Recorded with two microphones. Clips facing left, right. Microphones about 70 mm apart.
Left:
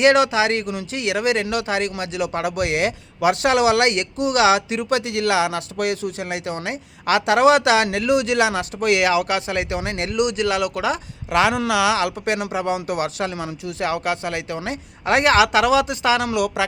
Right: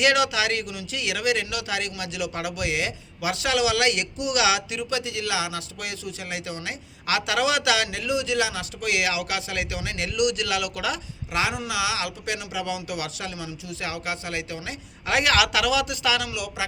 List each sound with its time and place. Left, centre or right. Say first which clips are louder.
0.0 s speech: left 6 dB; left
11.3 s speech: left 9 dB; left